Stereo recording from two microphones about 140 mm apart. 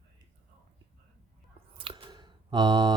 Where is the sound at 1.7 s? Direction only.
40° right (ahead or behind).